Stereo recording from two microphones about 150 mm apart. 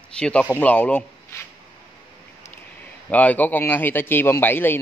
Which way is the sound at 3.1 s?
10° left (ahead or behind).